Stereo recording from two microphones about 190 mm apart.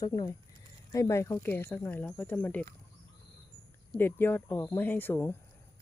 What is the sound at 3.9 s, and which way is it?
Speech, 10° left (ahead or behind).